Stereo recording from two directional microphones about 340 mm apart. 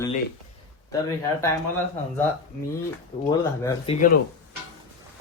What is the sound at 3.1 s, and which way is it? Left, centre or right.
Speech, centre.